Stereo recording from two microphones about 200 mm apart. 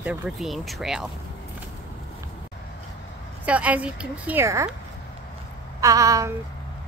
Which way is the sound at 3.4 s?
5° right (ahead or behind).